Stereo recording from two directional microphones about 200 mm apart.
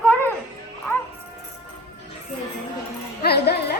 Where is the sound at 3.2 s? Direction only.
55° left (ahead or behind).